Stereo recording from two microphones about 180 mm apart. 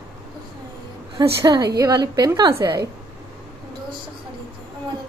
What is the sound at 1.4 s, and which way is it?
Speech, 20° right (ahead or behind).